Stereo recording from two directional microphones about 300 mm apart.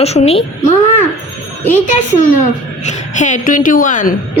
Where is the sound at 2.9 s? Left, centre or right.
Left.